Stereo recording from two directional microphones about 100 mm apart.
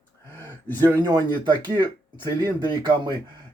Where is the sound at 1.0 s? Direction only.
45° right (ahead or behind).